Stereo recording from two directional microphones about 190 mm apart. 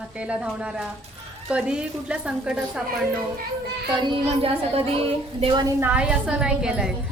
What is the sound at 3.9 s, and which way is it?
Music, 25° right (ahead or behind).